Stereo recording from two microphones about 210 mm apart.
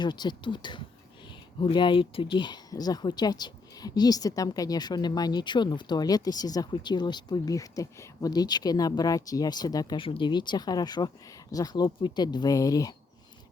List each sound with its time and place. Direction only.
0.0 s speech: 20° left (ahead or behind)